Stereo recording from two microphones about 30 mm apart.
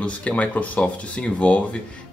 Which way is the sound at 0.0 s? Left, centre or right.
Left.